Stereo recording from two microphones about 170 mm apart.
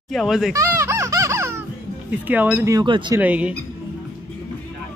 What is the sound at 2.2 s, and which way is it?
Speech, 10° right (ahead or behind).